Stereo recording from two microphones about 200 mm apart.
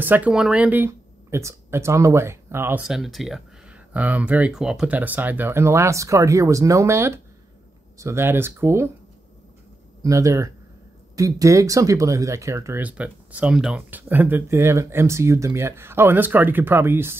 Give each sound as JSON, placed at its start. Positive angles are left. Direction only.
{"t": 0.0, "sound": "speech", "side_deg": -10}
{"t": 10.0, "sound": "speech", "side_deg": -15}